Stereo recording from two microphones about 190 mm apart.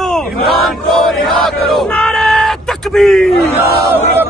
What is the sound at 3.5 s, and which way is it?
Battle cry, 10° right (ahead or behind).